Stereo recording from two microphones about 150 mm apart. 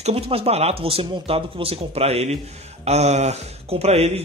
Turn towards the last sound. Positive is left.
turn(degrees=-45)  # may be behind; listen again after turning